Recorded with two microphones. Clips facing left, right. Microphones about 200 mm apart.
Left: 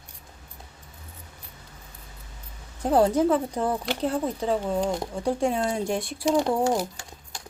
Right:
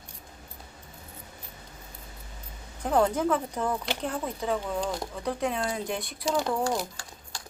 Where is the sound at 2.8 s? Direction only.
35° left (ahead or behind).